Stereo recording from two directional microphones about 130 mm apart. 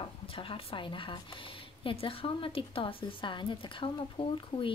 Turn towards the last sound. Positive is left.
turn(degrees=40)  # may be behind; listen again after turning